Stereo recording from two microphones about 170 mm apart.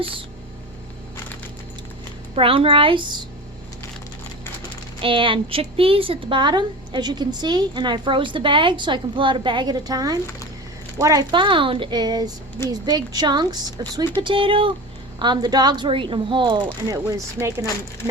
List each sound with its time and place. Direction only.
2.3 s a woman's voice: 30° right (ahead or behind)
5.0 s a woman's voice: 30° right (ahead or behind)